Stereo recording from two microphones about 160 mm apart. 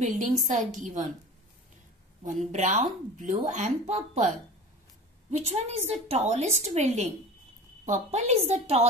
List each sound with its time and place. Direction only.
0.0 s speech: 50° right (ahead or behind)
2.2 s speech: 50° right (ahead or behind)
5.3 s speech: 45° right (ahead or behind)